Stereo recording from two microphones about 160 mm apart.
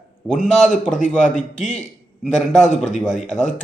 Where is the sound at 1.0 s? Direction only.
50° left (ahead or behind).